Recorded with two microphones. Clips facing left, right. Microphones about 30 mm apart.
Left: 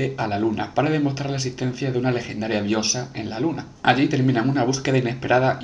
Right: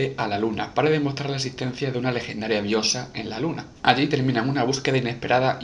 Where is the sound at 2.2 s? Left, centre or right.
Right.